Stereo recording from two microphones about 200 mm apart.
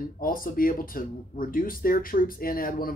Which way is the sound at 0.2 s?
45° left (ahead or behind).